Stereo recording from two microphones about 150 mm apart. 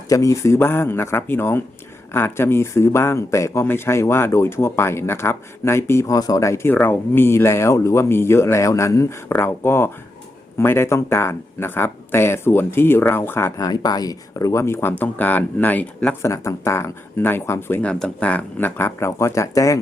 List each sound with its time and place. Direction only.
0.1 s speech: 20° left (ahead or behind)
16.3 s speech: 20° left (ahead or behind)